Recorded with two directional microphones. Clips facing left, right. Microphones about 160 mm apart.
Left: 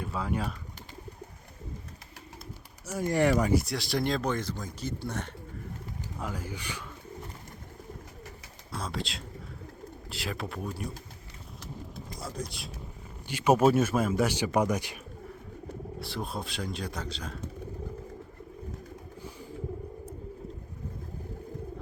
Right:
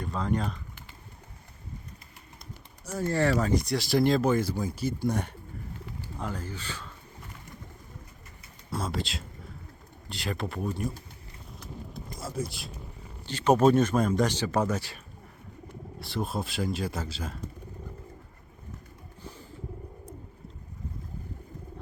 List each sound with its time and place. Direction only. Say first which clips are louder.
0.0 s speech: right 2 dB; 5° left (ahead or behind)
2.8 s a man's voice: left 1 dB; 10° left (ahead or behind)
3.6 s speech: right 6 dB; centre (ahead or behind)
6.1 s a man's voice: right 1 dB; 5° left (ahead or behind)
8.7 s a man's voice: right 3 dB; centre (ahead or behind)
12.1 s vehicle: right 4 dB; centre (ahead or behind)
13.2 s a man's voice: right 1 dB; 10° left (ahead or behind)
16.0 s a man's voice: right 5 dB; centre (ahead or behind)